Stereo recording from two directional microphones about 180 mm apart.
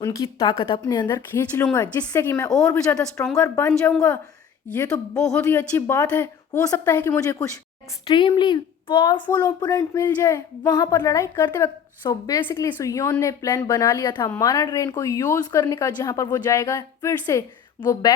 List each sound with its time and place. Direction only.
0.0 s speech: 20° left (ahead or behind)
1.5 s a woman's voice: 10° left (ahead or behind)
12.0 s a woman's voice: 20° left (ahead or behind)